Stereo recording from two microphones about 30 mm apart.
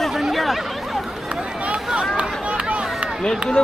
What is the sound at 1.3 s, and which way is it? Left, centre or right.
Run, right.